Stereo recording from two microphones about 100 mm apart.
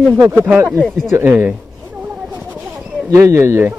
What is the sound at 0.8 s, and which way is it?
Speech, 5° left (ahead or behind).